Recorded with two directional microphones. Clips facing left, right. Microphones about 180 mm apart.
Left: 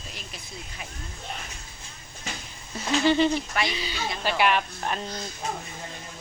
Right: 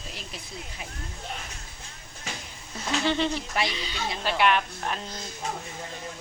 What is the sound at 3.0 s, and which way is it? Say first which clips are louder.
A woman's voice: left 6 dB; 5° left (ahead or behind).